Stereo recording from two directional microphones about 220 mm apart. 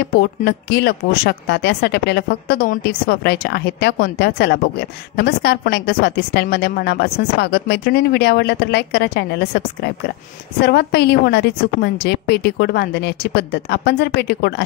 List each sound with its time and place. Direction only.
0.0 s a woman's voice: 45° left (ahead or behind)
10.6 s a woman's voice: 45° left (ahead or behind)